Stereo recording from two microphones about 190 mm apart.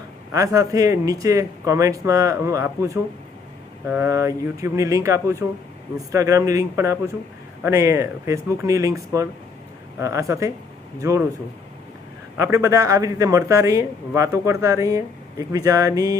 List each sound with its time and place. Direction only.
0.3 s speech: 15° right (ahead or behind)
12.5 s speech: 15° right (ahead or behind)